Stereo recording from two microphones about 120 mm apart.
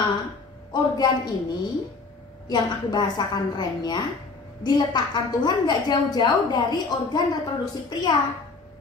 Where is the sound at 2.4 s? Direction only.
35° left (ahead or behind).